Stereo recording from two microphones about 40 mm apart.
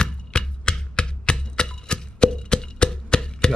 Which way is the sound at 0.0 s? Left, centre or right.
Left.